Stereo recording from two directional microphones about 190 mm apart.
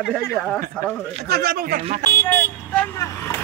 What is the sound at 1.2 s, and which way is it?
Speech, 55° right (ahead or behind).